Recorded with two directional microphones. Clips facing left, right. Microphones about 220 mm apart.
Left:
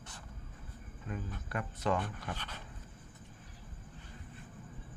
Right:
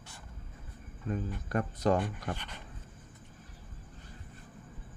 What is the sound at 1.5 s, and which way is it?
Speech, 40° right (ahead or behind).